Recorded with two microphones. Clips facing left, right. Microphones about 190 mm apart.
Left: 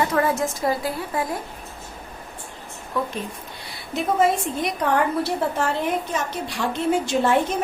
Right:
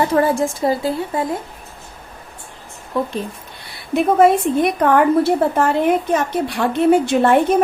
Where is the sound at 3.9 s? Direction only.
60° right (ahead or behind).